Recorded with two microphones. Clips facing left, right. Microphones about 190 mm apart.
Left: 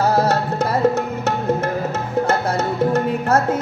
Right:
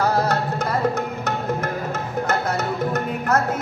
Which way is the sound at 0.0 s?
25° left (ahead or behind).